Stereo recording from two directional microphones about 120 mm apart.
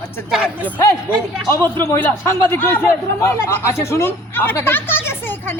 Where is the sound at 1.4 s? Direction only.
25° left (ahead or behind).